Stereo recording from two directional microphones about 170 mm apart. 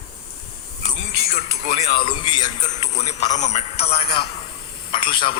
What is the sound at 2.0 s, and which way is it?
Speech, 30° left (ahead or behind).